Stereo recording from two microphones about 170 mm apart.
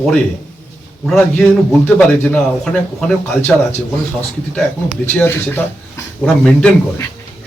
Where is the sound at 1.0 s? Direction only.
5° left (ahead or behind).